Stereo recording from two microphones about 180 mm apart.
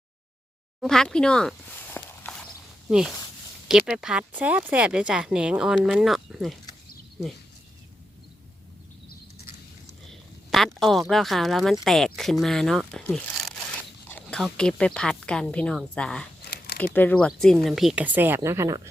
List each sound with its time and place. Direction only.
0.8 s a sound: 5° left (ahead or behind)
3.7 s speech: 5° right (ahead or behind)
10.1 s duck: centre (ahead or behind)
10.8 s speech: centre (ahead or behind)
16.4 s a sound: 60° left (ahead or behind)
16.7 s speech: 10° left (ahead or behind); by 18.8 s 15° right (ahead or behind)